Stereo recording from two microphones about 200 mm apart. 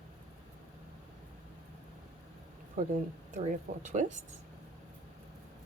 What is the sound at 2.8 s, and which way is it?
Speech, 40° right (ahead or behind).